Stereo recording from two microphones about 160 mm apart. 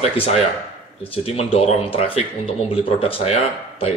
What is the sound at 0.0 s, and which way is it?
Speech, 40° left (ahead or behind).